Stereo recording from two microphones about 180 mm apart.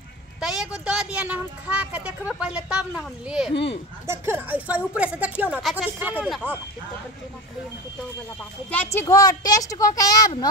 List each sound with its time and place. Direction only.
0.4 s speech: 5° right (ahead or behind)
3.5 s speech: 30° left (ahead or behind)
4.1 s speech: 10° right (ahead or behind)
8.6 s speech: 10° left (ahead or behind)
9.0 s speech: 20° left (ahead or behind)